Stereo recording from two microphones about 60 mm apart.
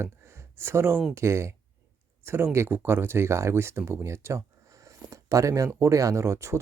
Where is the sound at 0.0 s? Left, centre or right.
Right.